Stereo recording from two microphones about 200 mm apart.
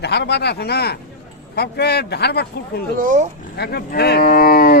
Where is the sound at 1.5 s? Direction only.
55° left (ahead or behind).